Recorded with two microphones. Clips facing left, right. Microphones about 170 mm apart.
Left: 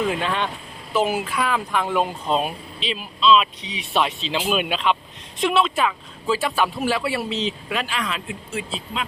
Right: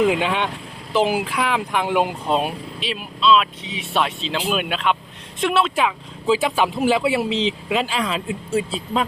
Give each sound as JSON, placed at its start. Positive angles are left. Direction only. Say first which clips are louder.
{"t": 0.1, "sound": "speech", "louder": "right 3 dB", "side_deg": -15}
{"t": 7.3, "sound": "speech", "louder": "right 4 dB", "side_deg": -90}
{"t": 7.7, "sound": "speech", "louder": "right 5 dB", "side_deg": -25}